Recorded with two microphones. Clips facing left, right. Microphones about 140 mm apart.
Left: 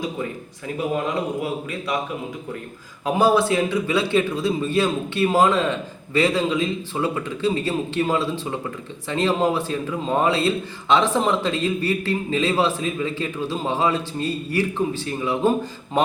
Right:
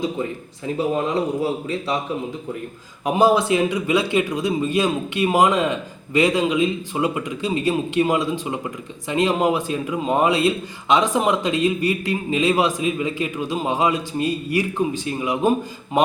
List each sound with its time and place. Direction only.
0.8 s a man's voice: 25° right (ahead or behind)
3.0 s a man's voice: 15° right (ahead or behind)